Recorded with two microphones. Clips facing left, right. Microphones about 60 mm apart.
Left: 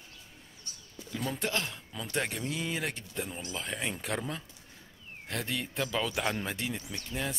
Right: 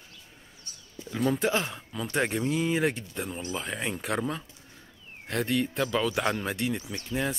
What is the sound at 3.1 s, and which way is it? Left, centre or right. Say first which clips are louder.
Speech: right 4 dB; centre.